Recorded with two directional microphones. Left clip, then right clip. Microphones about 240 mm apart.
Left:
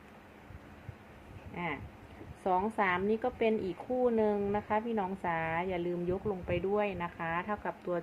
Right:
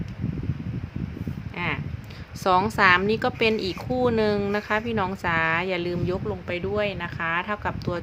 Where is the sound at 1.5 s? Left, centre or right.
Right.